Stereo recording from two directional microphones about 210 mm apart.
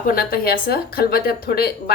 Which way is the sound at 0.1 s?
45° left (ahead or behind).